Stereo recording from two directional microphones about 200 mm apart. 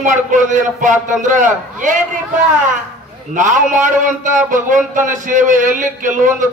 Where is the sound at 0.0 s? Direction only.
40° right (ahead or behind).